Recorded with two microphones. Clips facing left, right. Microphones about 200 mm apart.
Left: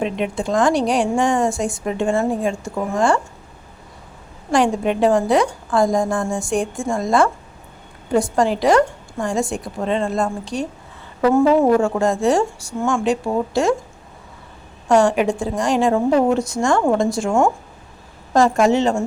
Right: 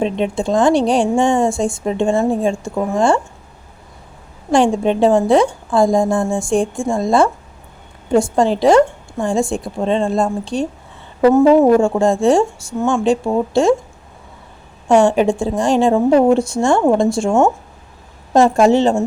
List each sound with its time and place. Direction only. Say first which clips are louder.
0.0 s a woman's voice: right 4 dB; 30° right (ahead or behind)
4.5 s a woman's voice: right 4 dB; 25° right (ahead or behind)
14.8 s a woman's voice: right 3 dB; 25° right (ahead or behind)